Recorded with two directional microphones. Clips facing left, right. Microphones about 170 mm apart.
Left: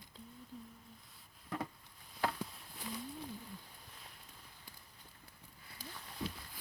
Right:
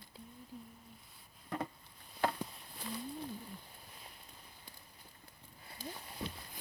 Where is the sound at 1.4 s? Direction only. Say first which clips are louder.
Right 2 dB; centre (ahead or behind).